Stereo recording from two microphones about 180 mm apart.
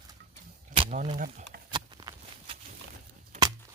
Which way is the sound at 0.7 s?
40° right (ahead or behind).